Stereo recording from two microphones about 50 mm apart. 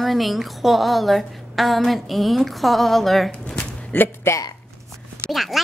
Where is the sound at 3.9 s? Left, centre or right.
Left.